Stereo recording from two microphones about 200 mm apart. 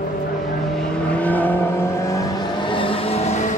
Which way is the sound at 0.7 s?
5° left (ahead or behind).